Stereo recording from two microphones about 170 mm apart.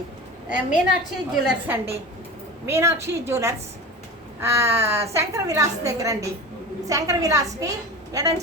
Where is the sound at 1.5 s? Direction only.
10° right (ahead or behind).